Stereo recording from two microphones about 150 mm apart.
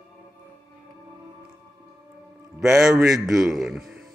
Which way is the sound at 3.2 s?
Centre (ahead or behind).